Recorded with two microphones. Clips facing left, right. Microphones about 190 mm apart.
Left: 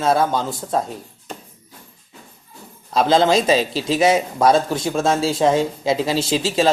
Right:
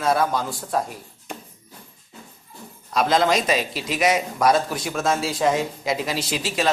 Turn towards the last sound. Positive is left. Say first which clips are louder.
# left 6 dB
turn(degrees=30)  # may be behind; listen again after turning